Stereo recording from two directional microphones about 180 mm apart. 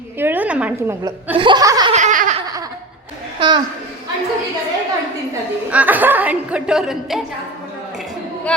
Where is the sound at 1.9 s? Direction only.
45° right (ahead or behind).